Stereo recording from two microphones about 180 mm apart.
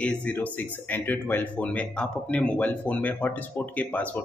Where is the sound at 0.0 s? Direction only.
5° left (ahead or behind).